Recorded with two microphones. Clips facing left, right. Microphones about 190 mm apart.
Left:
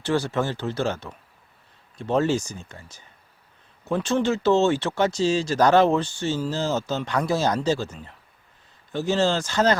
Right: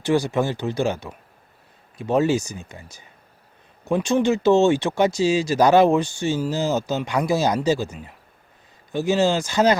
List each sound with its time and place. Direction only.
0.0 s speech: 15° right (ahead or behind)